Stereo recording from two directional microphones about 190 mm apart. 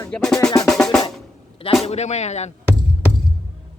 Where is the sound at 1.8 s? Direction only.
35° left (ahead or behind).